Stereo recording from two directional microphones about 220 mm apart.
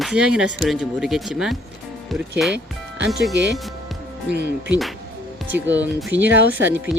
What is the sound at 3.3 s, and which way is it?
Speech, 50° right (ahead or behind).